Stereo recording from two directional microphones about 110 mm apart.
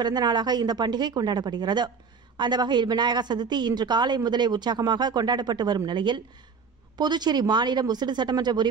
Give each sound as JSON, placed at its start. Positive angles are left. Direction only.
{"t": 0.0, "sound": "a woman's voice", "side_deg": -40}